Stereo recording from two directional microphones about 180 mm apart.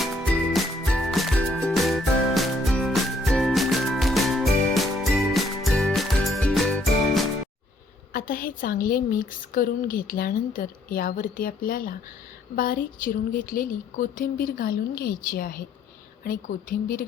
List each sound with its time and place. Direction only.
0.0 s music: centre (ahead or behind)
8.1 s a woman's voice: 55° left (ahead or behind)